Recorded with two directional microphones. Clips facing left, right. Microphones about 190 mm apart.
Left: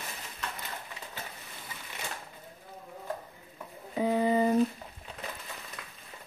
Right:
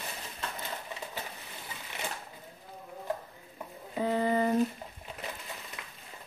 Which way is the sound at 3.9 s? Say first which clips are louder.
Left 2 dB; 15° left (ahead or behind).